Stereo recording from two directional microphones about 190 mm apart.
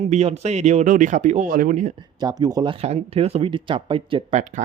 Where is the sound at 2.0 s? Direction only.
20° right (ahead or behind).